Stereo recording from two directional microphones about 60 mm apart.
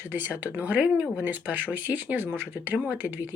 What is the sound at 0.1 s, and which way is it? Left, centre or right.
Speech, right.